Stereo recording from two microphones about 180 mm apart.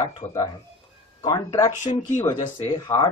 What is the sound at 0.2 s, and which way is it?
Speech, 40° left (ahead or behind).